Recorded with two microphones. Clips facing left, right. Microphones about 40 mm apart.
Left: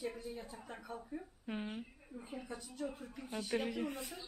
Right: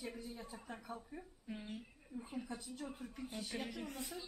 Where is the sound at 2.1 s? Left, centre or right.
Centre.